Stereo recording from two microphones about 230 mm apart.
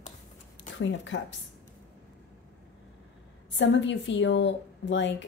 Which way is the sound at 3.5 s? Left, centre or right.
Left.